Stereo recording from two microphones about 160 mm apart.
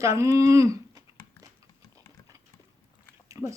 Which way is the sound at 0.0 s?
20° right (ahead or behind).